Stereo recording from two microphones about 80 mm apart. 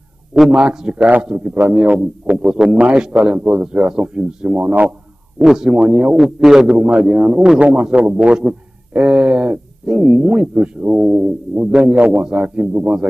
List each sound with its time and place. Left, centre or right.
0.5 s speech: centre
5.4 s speech: centre
5.7 s speech: centre
6.1 s speech: centre